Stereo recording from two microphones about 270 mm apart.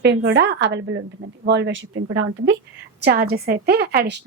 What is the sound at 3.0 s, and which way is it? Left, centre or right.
A woman's voice, right.